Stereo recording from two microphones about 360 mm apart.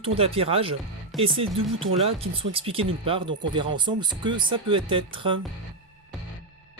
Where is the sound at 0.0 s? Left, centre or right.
Centre.